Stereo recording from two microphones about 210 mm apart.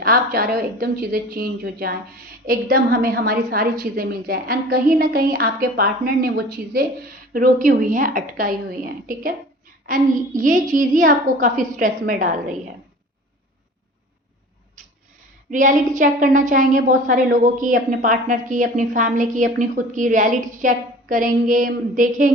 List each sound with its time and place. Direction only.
0.0 s a woman's voice: 45° right (ahead or behind)
15.4 s a woman's voice: 40° right (ahead or behind)